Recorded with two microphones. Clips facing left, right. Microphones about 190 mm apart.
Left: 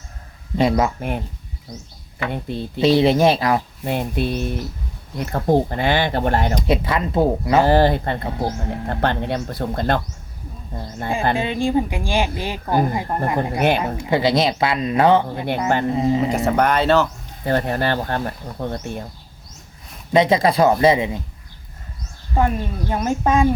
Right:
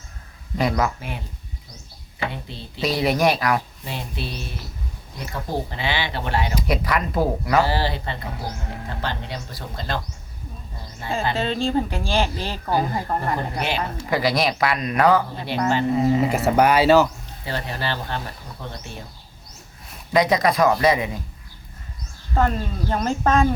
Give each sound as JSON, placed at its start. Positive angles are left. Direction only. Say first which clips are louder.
{"t": 0.5, "sound": "speech", "louder": "left 4 dB", "side_deg": 25}
{"t": 0.9, "sound": "speech", "louder": "left 8 dB", "side_deg": 50}
{"t": 2.8, "sound": "speech", "louder": "left 6 dB", "side_deg": 25}
{"t": 3.8, "sound": "speech", "louder": "left 9 dB", "side_deg": 55}
{"t": 6.7, "sound": "speech", "louder": "left 3 dB", "side_deg": 25}
{"t": 7.6, "sound": "speech", "louder": "left 8 dB", "side_deg": 50}
{"t": 11.3, "sound": "speech", "louder": "left 3 dB", "side_deg": 15}
{"t": 13.6, "sound": "speech", "louder": "left 7 dB", "side_deg": 55}
{"t": 14.1, "sound": "speech", "louder": "left 4 dB", "side_deg": 25}
{"t": 16.3, "sound": "speech", "louder": "even", "side_deg": -5}
{"t": 17.4, "sound": "speech", "louder": "left 8 dB", "side_deg": 50}
{"t": 20.1, "sound": "speech", "louder": "left 3 dB", "side_deg": 25}
{"t": 22.4, "sound": "speech", "louder": "left 2 dB", "side_deg": 15}